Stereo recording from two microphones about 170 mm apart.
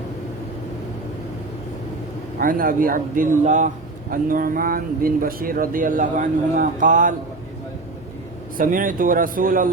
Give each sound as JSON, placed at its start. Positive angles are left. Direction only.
{"t": 2.4, "sound": "speech", "side_deg": -55}
{"t": 8.5, "sound": "speech", "side_deg": -50}